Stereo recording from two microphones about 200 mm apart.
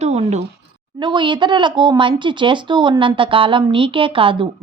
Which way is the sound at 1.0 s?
25° right (ahead or behind).